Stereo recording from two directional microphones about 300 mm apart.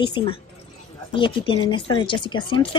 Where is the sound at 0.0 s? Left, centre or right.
Centre.